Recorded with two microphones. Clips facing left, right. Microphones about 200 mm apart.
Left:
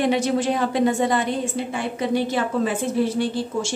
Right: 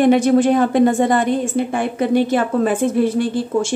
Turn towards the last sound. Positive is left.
turn(degrees=-55)  # may be behind; listen again after turning